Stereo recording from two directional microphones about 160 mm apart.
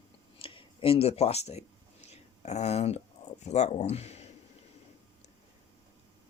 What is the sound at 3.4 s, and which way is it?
Speech, 45° left (ahead or behind).